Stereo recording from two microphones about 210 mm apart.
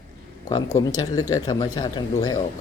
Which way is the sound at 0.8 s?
15° left (ahead or behind).